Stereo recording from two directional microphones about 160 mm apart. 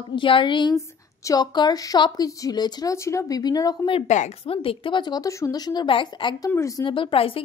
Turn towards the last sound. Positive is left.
turn(degrees=35)  # may be behind; listen again after turning